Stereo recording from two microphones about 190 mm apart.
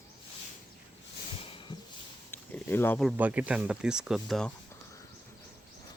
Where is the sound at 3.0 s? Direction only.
10° right (ahead or behind).